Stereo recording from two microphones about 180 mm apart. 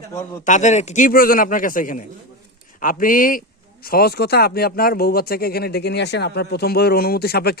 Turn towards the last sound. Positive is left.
turn(degrees=60)  # may be behind; listen again after turning